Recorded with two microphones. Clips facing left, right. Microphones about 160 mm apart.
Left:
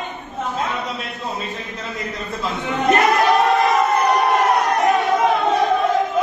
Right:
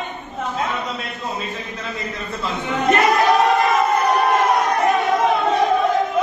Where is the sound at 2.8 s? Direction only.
Centre (ahead or behind).